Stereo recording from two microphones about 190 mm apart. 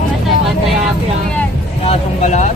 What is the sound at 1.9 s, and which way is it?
Vehicle, 40° left (ahead or behind).